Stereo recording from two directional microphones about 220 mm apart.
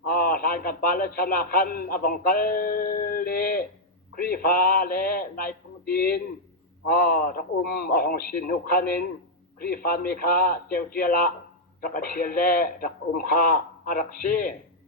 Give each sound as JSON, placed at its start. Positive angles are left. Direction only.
{"t": 0.0, "sound": "a man's voice", "side_deg": 40}